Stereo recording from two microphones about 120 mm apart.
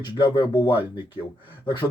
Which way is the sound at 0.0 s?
40° left (ahead or behind).